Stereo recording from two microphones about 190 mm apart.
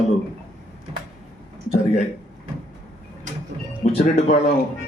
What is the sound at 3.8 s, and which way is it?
Speech, 35° left (ahead or behind).